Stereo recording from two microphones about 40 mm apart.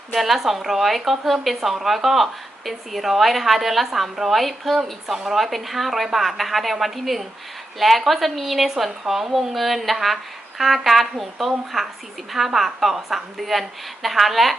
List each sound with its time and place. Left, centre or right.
0.1 s a woman's voice: centre
5.5 s a woman's voice: centre